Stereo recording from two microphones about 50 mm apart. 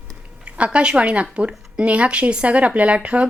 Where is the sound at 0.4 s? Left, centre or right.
Right.